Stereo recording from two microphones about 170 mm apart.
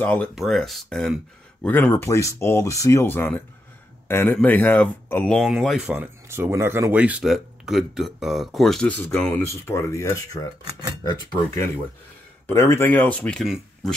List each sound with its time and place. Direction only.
0.0 s speech: 10° left (ahead or behind)
1.7 s speech: 10° left (ahead or behind)